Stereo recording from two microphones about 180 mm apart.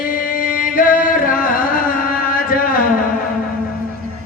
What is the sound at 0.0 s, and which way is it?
Music, 50° left (ahead or behind).